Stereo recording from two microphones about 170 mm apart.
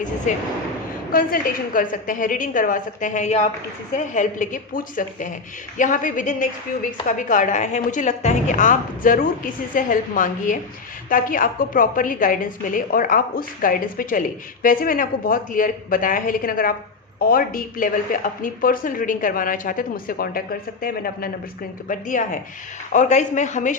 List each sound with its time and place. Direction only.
1.1 s a woman's voice: 55° left (ahead or behind)
21.8 s a woman's voice: 50° left (ahead or behind)